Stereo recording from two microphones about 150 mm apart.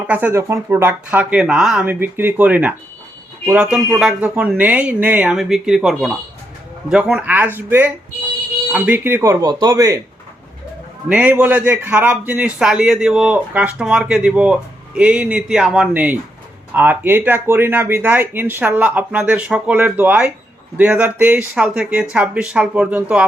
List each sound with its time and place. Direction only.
0.1 s a man's voice: 10° right (ahead or behind)
11.1 s a man's voice: 10° right (ahead or behind)